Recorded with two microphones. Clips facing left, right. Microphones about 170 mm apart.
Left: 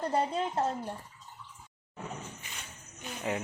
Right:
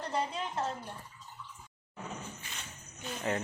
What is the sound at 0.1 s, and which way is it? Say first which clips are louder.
Speech: left 3 dB; 45° left (ahead or behind).